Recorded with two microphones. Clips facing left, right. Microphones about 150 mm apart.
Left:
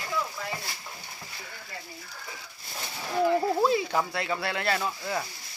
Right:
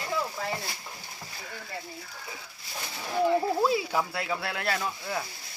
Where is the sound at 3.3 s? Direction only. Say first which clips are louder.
Left 1 dB; centre (ahead or behind).